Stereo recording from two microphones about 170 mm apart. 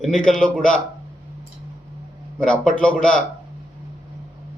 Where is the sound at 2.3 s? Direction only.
5° left (ahead or behind).